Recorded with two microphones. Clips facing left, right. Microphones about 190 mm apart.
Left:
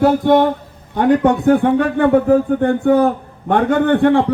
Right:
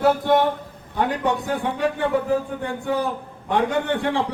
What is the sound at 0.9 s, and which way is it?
A man's voice, 50° left (ahead or behind).